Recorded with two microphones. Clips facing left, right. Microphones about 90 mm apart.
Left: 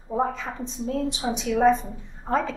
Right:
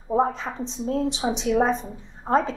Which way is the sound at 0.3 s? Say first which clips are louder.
Right 1 dB; 30° right (ahead or behind).